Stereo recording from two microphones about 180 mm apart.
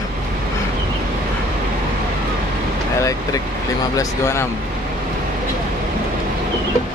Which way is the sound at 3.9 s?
15° left (ahead or behind).